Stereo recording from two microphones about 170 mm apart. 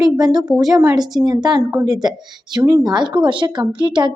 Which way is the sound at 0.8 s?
25° right (ahead or behind).